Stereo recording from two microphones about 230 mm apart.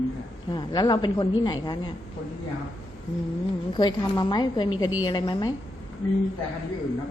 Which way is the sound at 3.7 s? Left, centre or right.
Centre.